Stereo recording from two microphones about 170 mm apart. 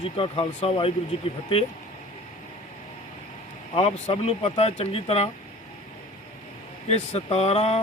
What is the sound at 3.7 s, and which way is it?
Speech, 35° left (ahead or behind).